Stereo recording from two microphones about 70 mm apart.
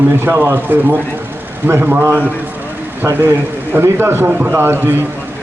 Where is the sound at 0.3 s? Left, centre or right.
Right.